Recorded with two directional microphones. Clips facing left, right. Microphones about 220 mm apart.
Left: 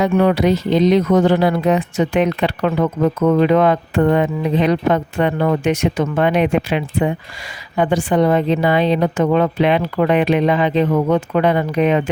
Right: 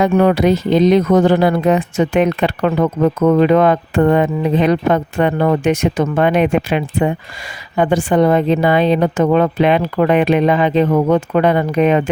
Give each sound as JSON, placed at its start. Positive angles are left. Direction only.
{"t": 0.0, "sound": "speech", "side_deg": -50}